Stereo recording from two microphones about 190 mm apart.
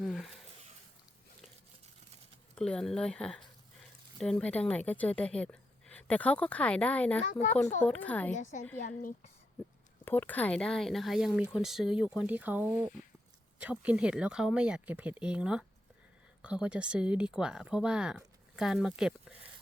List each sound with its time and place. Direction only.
0.0 s speech: centre (ahead or behind)
2.6 s a woman's voice: 5° left (ahead or behind)
7.2 s speech: 35° left (ahead or behind)
7.9 s a woman's voice: 10° left (ahead or behind)
8.5 s a woman's voice: 45° left (ahead or behind)
10.0 s speech: 10° left (ahead or behind)